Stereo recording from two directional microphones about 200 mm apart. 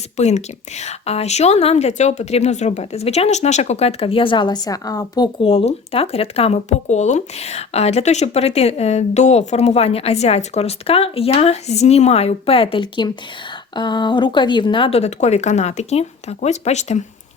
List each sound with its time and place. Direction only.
0.2 s a woman's voice: 35° left (ahead or behind)